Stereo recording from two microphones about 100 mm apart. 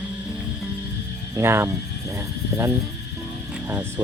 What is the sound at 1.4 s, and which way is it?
Speech, 25° right (ahead or behind).